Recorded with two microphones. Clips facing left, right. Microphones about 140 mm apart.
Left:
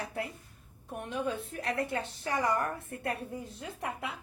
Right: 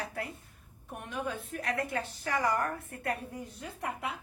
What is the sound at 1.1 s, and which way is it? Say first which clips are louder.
A woman's voice: left 2 dB; 30° left (ahead or behind).